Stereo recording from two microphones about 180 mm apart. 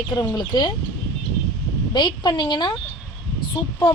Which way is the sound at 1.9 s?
25° left (ahead or behind).